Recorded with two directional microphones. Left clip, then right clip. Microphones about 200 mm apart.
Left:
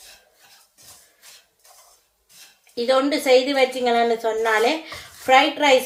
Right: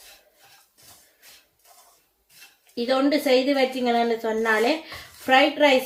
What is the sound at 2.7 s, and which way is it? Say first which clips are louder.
A woman's voice: left 3 dB; 25° right (ahead or behind).